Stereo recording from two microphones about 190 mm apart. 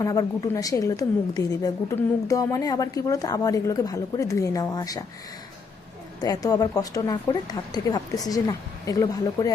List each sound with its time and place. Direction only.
0.0 s a woman's voice: 20° left (ahead or behind)
6.1 s speech: 20° left (ahead or behind)